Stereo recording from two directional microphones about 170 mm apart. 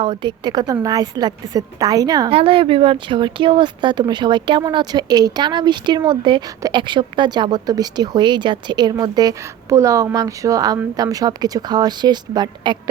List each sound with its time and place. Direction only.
0.0 s a woman's voice: 25° right (ahead or behind)
2.3 s a woman's voice: 35° right (ahead or behind)